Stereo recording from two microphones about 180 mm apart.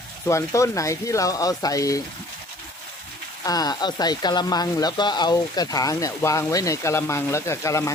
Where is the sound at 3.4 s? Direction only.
20° left (ahead or behind).